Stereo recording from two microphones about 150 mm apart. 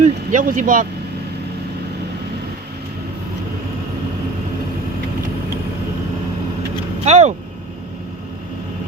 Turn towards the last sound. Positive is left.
turn(degrees=-50)  # may be behind; listen again after turning